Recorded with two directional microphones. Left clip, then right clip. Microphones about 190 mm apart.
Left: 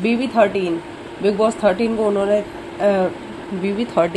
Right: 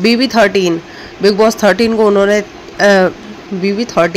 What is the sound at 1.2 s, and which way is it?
A woman's voice, 30° right (ahead or behind).